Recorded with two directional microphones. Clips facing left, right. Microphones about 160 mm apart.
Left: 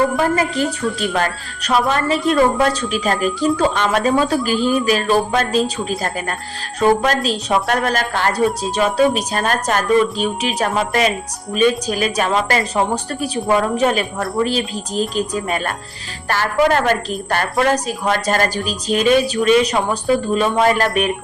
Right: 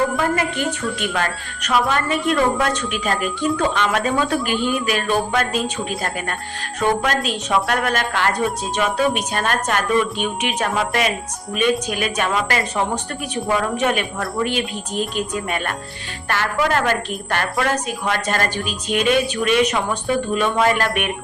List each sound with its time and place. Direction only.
0.9 s a woman's voice: 35° left (ahead or behind)